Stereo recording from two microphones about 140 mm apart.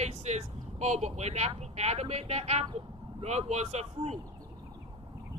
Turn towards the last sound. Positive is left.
turn(degrees=-50)  # may be behind; listen again after turning